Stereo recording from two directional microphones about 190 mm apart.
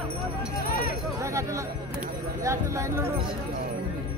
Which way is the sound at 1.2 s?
15° right (ahead or behind).